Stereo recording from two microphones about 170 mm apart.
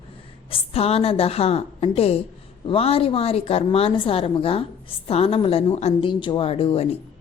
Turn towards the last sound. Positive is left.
turn(degrees=35)  # may be behind; listen again after turning